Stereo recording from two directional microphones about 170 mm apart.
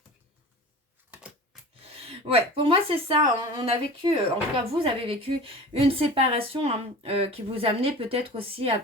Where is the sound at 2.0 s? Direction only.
35° right (ahead or behind).